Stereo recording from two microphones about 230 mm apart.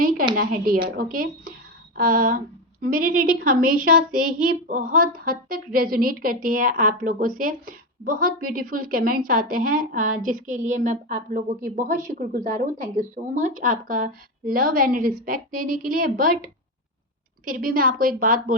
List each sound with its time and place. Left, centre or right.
0.3 s a woman's voice: right
17.4 s a woman's voice: right